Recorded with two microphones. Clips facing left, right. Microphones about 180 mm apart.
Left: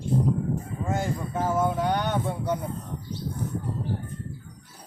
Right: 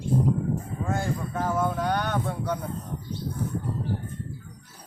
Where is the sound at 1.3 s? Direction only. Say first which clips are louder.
Left 2 dB; 10° left (ahead or behind).